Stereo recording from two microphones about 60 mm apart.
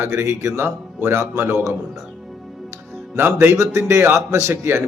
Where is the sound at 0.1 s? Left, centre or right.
Right.